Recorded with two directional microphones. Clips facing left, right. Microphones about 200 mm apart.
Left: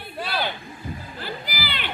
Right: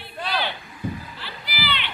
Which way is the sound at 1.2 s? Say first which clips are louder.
Left 3 dB; 45° left (ahead or behind).